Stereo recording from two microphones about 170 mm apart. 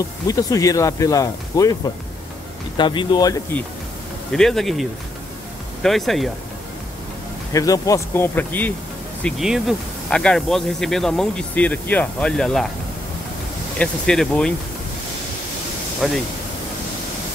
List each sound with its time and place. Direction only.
0.3 s speech: 20° left (ahead or behind)
2.8 s speech: 30° left (ahead or behind)
4.3 s speech: centre (ahead or behind)
7.5 s speech: 20° left (ahead or behind)
9.2 s speech: centre (ahead or behind)
13.7 s speech: 5° left (ahead or behind)
16.0 s speech: centre (ahead or behind)